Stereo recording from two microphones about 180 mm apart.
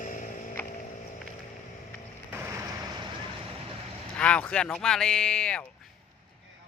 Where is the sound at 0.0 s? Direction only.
45° left (ahead or behind).